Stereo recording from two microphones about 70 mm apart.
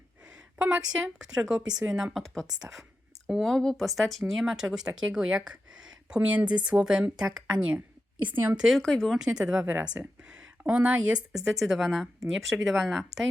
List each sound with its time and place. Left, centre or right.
0.6 s speech: centre
2.1 s speech: centre
3.4 s a woman's voice: centre
8.2 s a woman's voice: right
8.5 s speech: centre
8.8 s speech: centre
9.1 s speech: centre
11.6 s speech: centre